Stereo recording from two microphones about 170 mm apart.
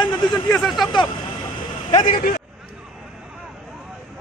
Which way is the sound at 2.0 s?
55° left (ahead or behind).